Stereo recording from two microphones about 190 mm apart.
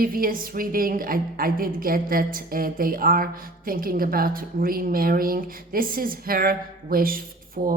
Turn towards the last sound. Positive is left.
turn(degrees=-50)  # may be behind; listen again after turning